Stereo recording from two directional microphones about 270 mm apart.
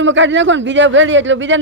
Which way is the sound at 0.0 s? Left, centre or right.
Right.